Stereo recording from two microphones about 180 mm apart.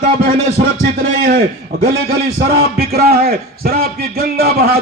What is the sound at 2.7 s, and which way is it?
A man's voice, 55° right (ahead or behind).